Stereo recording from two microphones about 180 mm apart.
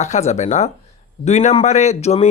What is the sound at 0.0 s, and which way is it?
Speech, 40° left (ahead or behind).